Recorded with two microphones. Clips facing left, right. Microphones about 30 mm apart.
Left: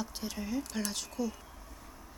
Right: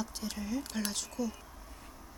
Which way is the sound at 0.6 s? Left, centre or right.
Right.